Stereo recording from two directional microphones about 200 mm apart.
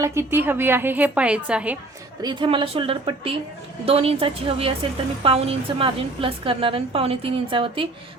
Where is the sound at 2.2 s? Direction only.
25° right (ahead or behind).